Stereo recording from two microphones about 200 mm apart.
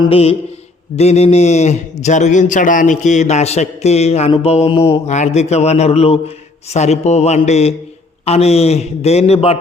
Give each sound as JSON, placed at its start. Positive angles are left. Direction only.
{"t": 0.0, "sound": "mantra", "side_deg": 30}
{"t": 0.9, "sound": "a man's voice", "side_deg": 30}